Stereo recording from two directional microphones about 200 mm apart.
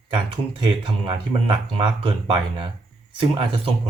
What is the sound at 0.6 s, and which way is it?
Speech, 25° right (ahead or behind).